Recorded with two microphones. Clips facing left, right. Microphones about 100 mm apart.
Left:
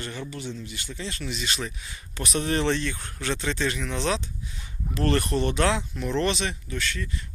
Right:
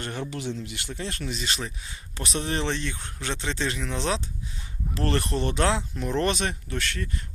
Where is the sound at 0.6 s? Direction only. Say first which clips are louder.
Right 1 dB; 70° right (ahead or behind).